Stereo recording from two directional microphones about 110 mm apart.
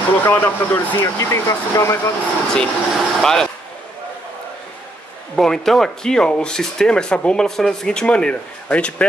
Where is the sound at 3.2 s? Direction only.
5° left (ahead or behind).